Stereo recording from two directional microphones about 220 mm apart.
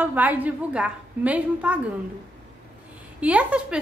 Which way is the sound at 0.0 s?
5° right (ahead or behind).